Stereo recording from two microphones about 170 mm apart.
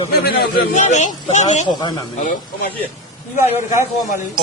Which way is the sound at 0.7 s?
45° left (ahead or behind).